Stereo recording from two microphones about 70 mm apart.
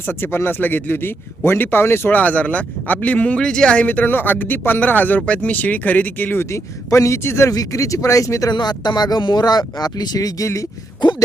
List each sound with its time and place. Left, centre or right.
0.1 s speech: left; by 3.8 s centre
3.8 s speech: left
6.4 s speech: left
7.5 s speech: left
8.5 s speech: left
11.0 s a sound: left